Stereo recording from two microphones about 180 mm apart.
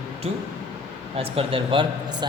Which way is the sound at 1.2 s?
30° right (ahead or behind).